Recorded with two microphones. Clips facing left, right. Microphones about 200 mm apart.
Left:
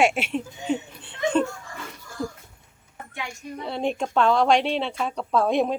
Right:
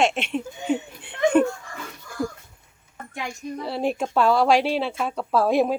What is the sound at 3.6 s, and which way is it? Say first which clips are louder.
Speech: right 1 dB; 5° right (ahead or behind).